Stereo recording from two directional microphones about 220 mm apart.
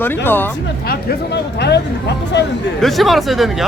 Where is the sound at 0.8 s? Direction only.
45° left (ahead or behind).